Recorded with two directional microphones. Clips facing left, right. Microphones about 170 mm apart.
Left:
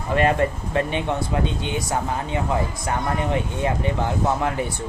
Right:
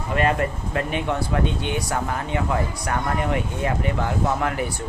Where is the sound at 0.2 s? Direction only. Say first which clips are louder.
Left 2 dB; 30° left (ahead or behind).